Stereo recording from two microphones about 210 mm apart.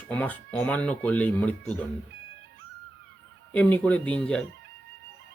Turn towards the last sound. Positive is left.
turn(degrees=5)  # may be behind; listen again after turning